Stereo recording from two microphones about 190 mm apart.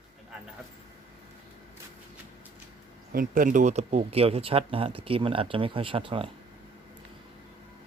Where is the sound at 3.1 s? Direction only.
50° right (ahead or behind); by 6.3 s 30° right (ahead or behind).